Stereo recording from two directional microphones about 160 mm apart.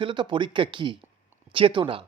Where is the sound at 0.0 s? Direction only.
30° right (ahead or behind).